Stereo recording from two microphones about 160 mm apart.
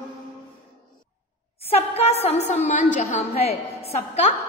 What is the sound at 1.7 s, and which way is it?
A woman's voice, 40° left (ahead or behind).